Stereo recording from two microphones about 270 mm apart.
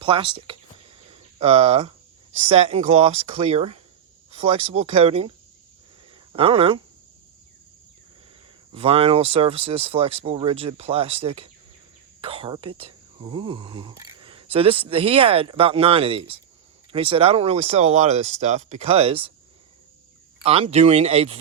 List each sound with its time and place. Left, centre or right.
0.0 s speech: centre
1.1 s cricket: right
2.5 s speech: right
6.3 s speech: right
8.7 s speech: right
20.4 s speech: right